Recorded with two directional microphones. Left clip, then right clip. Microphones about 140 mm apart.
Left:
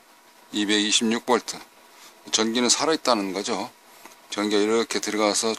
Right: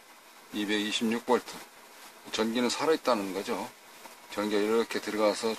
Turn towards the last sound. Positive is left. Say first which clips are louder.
# left 5 dB
turn(degrees=90)